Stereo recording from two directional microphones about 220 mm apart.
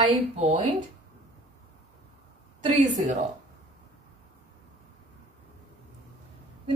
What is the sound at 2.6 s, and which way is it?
Speech, 30° right (ahead or behind).